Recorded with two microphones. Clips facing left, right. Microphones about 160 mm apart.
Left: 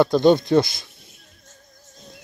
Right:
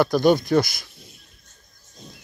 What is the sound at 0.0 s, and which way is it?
Speech, 25° left (ahead or behind).